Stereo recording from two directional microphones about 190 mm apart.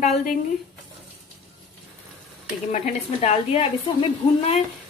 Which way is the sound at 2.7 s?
35° left (ahead or behind).